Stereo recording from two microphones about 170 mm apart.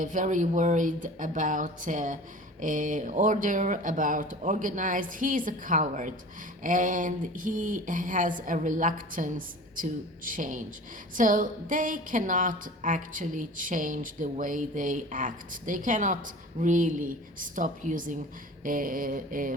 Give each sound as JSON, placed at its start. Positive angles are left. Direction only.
{"t": 0.0, "sound": "a woman's voice", "side_deg": -50}
{"t": 18.6, "sound": "mantra", "side_deg": -55}